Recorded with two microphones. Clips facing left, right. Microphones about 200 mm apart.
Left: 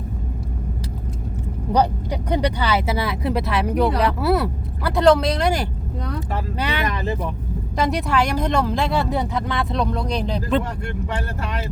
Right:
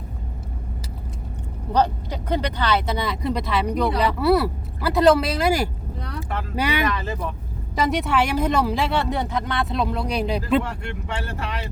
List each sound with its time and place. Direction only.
1.7 s speech: 15° left (ahead or behind); by 6.8 s 10° right (ahead or behind)
7.8 s speech: centre (ahead or behind)
10.6 s speech: 40° left (ahead or behind)